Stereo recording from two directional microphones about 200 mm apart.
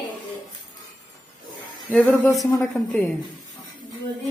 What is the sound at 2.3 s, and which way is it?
Speech, 15° left (ahead or behind).